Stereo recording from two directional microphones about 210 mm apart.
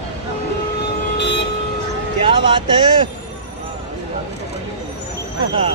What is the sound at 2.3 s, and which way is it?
Speech, 25° right (ahead or behind).